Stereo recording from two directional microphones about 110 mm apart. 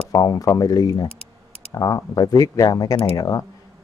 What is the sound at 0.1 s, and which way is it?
Speech, 35° left (ahead or behind).